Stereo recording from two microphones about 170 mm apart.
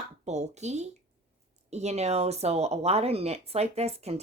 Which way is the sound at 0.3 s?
40° right (ahead or behind).